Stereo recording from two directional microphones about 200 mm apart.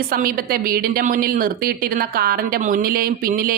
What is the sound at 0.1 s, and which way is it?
A woman's voice, 45° right (ahead or behind).